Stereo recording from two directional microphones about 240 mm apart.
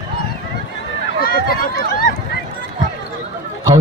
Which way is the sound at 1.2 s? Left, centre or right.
Left.